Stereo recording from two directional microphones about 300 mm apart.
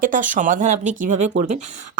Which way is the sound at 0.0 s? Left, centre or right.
Right.